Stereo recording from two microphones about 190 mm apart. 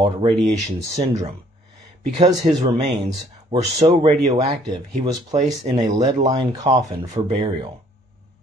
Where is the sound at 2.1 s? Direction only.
30° right (ahead or behind).